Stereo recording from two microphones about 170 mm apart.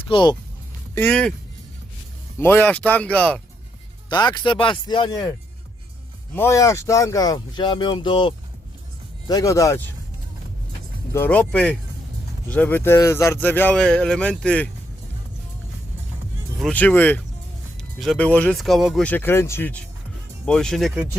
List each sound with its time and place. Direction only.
0.1 s speech: 25° left (ahead or behind)
0.9 s speech: 5° left (ahead or behind)
2.4 s speech: 10° left (ahead or behind)
4.1 s speech: 25° left (ahead or behind)
6.3 s speech: 15° left (ahead or behind)
11.1 s speech: 10° left (ahead or behind)
16.6 s speech: 5° left (ahead or behind)